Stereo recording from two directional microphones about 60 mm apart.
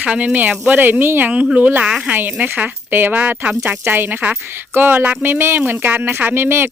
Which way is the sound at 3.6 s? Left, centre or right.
Right.